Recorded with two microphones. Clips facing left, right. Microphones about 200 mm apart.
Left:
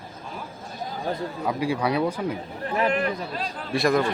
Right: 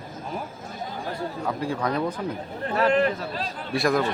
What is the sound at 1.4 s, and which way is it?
Speech, 10° left (ahead or behind).